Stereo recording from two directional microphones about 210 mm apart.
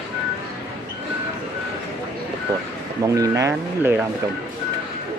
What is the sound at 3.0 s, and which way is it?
Speech, 15° right (ahead or behind).